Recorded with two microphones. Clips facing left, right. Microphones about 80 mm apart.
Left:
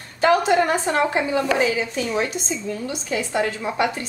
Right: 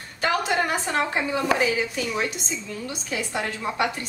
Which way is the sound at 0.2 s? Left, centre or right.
Left.